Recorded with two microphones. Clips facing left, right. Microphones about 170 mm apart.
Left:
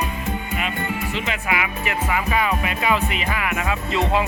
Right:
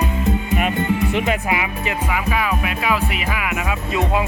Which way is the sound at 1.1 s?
55° right (ahead or behind).